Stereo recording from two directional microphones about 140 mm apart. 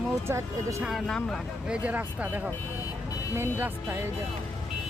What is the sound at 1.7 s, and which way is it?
Speech, 10° right (ahead or behind).